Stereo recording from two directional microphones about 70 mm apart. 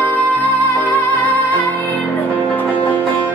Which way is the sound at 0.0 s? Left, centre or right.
Left.